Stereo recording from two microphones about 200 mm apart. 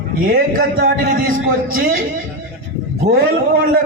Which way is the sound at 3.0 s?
35° right (ahead or behind).